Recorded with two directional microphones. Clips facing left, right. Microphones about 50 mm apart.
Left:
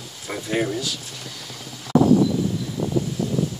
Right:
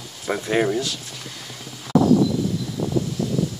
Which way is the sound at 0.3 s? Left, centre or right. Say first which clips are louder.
Right 4 dB; right.